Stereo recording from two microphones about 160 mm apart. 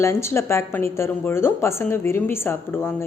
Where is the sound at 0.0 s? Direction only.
15° left (ahead or behind).